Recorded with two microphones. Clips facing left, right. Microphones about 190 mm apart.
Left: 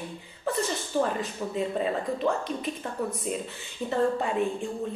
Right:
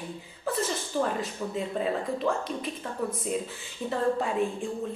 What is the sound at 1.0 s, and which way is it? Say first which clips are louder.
Speech: left 1 dB; centre (ahead or behind).